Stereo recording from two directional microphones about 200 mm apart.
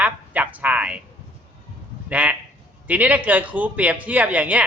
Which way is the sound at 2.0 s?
5° right (ahead or behind).